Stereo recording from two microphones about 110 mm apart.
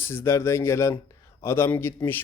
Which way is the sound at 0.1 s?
25° left (ahead or behind).